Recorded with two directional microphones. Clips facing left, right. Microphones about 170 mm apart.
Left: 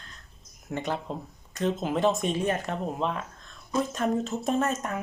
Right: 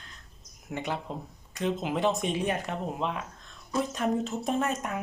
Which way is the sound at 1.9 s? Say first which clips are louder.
Left 3 dB; 15° right (ahead or behind).